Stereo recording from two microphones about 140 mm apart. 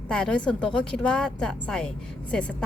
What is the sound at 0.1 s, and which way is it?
A woman's voice, 5° left (ahead or behind).